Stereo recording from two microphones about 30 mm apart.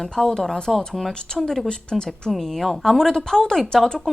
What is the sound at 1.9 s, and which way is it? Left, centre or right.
Speech, left.